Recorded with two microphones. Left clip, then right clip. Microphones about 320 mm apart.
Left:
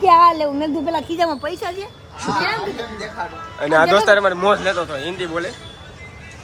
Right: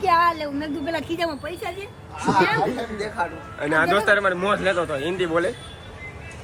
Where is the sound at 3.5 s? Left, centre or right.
Centre.